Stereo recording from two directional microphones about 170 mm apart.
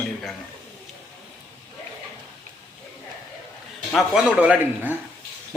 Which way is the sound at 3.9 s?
5° right (ahead or behind).